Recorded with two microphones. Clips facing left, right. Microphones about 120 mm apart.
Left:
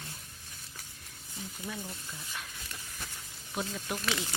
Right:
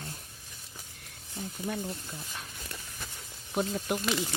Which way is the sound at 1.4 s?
50° right (ahead or behind).